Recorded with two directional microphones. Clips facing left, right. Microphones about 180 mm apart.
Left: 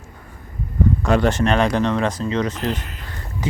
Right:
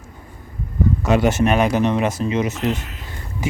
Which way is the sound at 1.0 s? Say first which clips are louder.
Right 2 dB; 5° right (ahead or behind).